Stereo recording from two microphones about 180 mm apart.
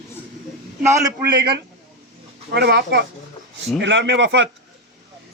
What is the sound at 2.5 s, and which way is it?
Speech, 65° right (ahead or behind).